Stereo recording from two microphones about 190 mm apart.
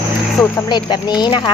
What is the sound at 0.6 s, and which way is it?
Speech, 20° left (ahead or behind).